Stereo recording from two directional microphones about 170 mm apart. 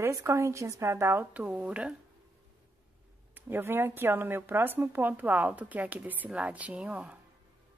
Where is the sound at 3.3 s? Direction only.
10° right (ahead or behind).